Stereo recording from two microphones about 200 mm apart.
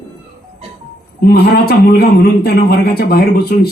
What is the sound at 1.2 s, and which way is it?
A man's voice, 50° left (ahead or behind).